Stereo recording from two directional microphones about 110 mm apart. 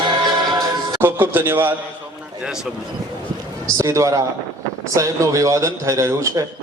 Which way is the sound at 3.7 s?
30° right (ahead or behind).